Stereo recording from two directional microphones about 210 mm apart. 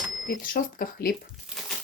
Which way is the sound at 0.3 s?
45° left (ahead or behind).